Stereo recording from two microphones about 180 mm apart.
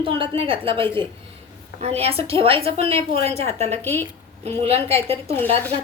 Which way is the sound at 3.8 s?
10° left (ahead or behind).